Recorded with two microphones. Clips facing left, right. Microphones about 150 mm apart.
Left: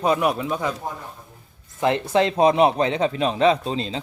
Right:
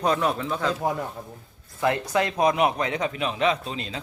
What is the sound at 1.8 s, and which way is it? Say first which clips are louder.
A man's voice: left 4 dB; 25° left (ahead or behind).